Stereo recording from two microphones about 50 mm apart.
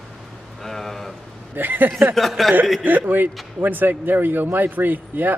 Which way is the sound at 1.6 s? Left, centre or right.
Right.